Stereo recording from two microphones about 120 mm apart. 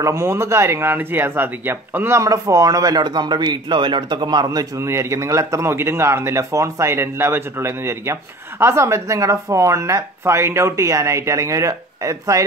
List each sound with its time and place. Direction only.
0.0 s speech: 25° right (ahead or behind)